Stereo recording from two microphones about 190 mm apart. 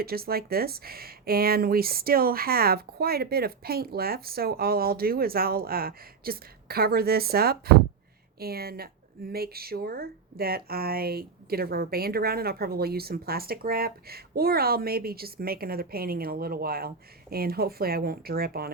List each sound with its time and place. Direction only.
0.0 s speech: 55° right (ahead or behind)